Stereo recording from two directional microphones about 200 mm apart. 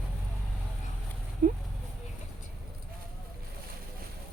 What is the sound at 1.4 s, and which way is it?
Speech, 40° right (ahead or behind).